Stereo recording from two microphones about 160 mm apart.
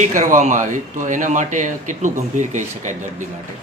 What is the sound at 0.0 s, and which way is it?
Speech, 55° right (ahead or behind).